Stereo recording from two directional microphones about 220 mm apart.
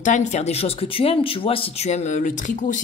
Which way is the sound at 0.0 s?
35° left (ahead or behind).